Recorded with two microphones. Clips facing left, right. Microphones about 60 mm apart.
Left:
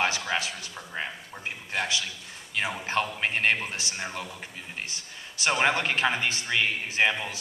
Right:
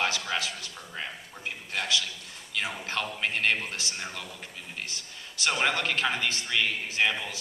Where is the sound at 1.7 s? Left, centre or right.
Left.